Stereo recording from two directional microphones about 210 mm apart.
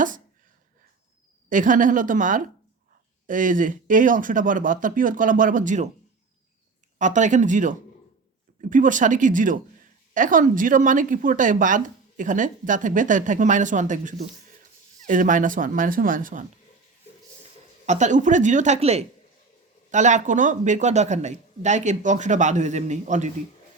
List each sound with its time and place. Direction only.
1.5 s speech: 40° right (ahead or behind)
7.0 s speech: 35° right (ahead or behind)
17.8 s speech: 35° right (ahead or behind)